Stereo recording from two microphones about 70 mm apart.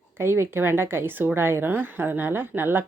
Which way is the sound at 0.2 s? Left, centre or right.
Right.